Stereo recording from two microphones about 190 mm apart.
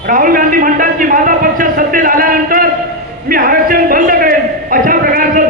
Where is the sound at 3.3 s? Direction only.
45° right (ahead or behind).